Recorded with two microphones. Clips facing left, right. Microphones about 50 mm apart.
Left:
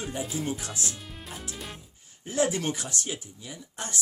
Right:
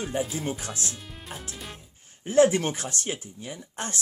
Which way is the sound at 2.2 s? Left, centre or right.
Right.